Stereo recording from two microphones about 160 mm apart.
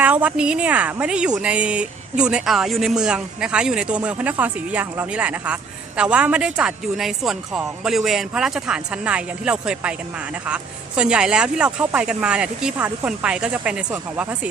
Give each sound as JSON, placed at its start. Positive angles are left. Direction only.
{"t": 0.0, "sound": "speech", "side_deg": -10}